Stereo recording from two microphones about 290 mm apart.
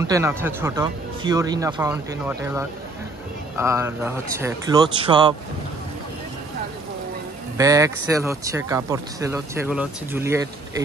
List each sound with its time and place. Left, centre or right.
0.0 s speech: centre
7.5 s speech: centre